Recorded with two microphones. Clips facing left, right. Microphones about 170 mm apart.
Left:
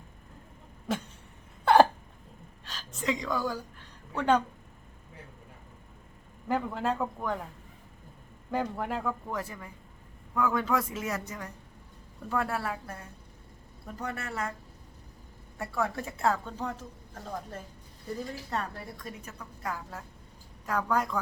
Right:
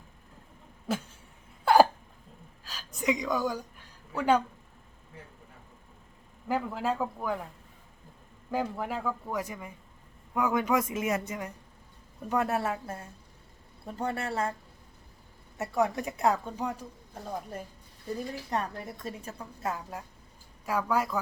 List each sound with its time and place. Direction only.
0.9 s a sound: 5° right (ahead or behind)
1.6 s hiccup: 5° right (ahead or behind)
2.6 s a woman's voice: 10° right (ahead or behind)
4.1 s speech: 5° right (ahead or behind)
6.5 s speech: 5° right (ahead or behind)
8.4 s speech: centre (ahead or behind)
9.3 s a woman's voice: 15° right (ahead or behind)
15.5 s speech: 20° right (ahead or behind)
18.5 s a woman's voice: 20° right (ahead or behind)
20.7 s speech: 10° right (ahead or behind)